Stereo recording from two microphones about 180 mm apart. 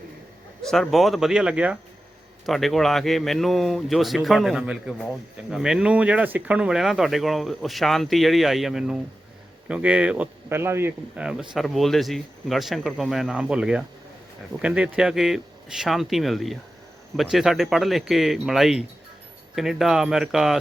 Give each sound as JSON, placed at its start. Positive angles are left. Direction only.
{"t": 0.6, "sound": "a man's voice", "side_deg": 5}